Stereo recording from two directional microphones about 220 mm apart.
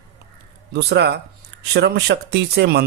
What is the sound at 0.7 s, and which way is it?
Speech, 50° right (ahead or behind).